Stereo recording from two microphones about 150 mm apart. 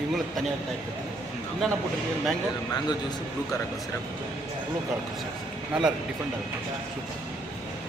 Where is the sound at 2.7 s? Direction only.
25° left (ahead or behind).